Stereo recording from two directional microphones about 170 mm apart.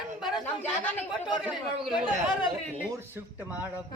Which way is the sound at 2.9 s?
15° right (ahead or behind).